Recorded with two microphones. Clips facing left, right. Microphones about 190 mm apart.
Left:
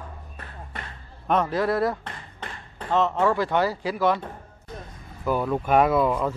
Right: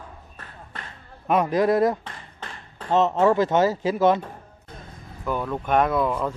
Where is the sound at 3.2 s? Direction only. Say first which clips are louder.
Right 4 dB; 20° right (ahead or behind).